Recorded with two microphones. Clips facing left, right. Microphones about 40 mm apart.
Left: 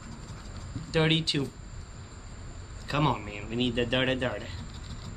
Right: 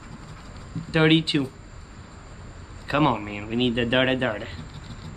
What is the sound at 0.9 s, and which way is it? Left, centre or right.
Speech, right.